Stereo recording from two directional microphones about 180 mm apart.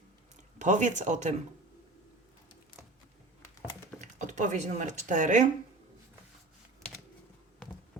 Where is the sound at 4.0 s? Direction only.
40° right (ahead or behind).